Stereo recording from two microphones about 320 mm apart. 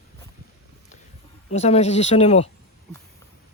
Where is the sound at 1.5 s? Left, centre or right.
Left.